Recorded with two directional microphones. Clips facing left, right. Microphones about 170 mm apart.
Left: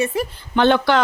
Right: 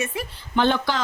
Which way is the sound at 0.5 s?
70° left (ahead or behind).